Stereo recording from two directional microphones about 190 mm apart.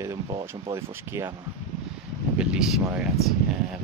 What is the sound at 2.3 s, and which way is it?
Speech, 5° right (ahead or behind).